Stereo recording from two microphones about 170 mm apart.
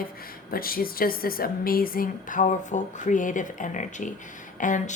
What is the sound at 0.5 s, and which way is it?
Speech, 60° left (ahead or behind).